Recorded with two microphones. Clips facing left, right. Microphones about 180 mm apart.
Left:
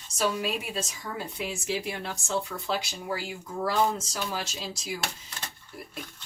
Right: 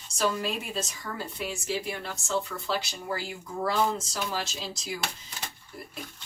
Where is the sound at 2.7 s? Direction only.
5° left (ahead or behind).